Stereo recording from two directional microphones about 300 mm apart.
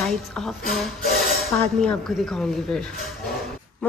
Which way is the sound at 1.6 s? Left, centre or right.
Centre.